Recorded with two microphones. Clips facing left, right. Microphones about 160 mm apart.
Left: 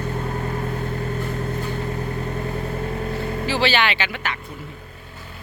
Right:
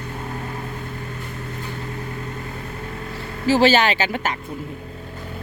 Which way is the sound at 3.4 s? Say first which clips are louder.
Right 6 dB; 40° right (ahead or behind).